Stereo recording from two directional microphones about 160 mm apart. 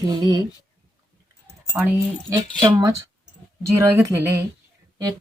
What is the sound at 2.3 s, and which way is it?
Speech, 25° right (ahead or behind).